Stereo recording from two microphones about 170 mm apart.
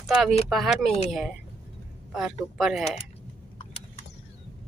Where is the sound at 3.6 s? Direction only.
35° left (ahead or behind).